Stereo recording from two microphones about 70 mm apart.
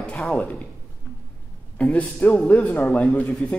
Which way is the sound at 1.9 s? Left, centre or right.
Left.